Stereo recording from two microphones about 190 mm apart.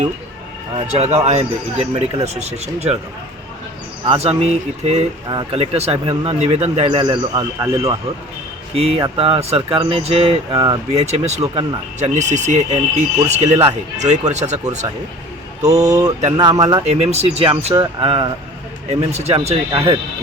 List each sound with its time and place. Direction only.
0.8 s speech: 35° right (ahead or behind)
4.0 s speech: 30° right (ahead or behind)
8.7 s speech: 30° right (ahead or behind)
10.5 s speech: 20° right (ahead or behind)
10.9 s speech: 35° right (ahead or behind)
15.6 s speech: 20° right (ahead or behind)
16.8 s speech: 35° right (ahead or behind)